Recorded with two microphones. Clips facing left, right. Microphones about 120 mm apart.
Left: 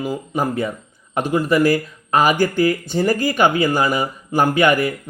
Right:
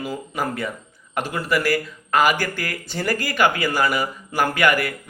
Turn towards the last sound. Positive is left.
turn(degrees=25)  # may be behind; listen again after turning